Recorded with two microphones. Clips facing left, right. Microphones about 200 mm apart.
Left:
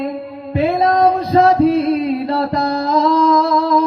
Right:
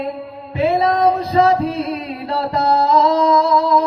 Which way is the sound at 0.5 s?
45° left (ahead or behind).